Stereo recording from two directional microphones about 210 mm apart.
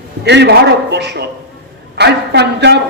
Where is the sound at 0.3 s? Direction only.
55° right (ahead or behind).